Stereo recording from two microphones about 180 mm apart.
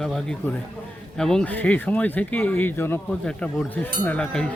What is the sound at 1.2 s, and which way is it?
Speech, 5° left (ahead or behind).